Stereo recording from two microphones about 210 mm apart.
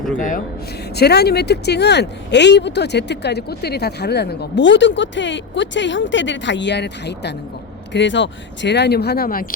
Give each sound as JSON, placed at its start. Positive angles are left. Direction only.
{"t": 0.2, "sound": "speech", "side_deg": 40}
{"t": 0.9, "sound": "speech", "side_deg": 50}